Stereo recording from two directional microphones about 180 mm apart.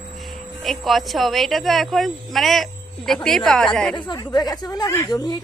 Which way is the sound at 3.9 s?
25° left (ahead or behind).